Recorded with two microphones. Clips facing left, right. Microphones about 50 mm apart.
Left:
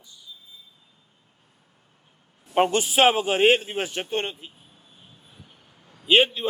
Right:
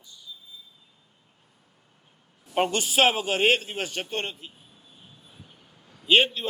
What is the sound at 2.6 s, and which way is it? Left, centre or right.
A man's voice, centre.